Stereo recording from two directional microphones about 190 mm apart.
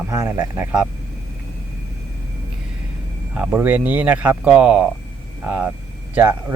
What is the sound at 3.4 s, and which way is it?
A man's voice, 5° right (ahead or behind).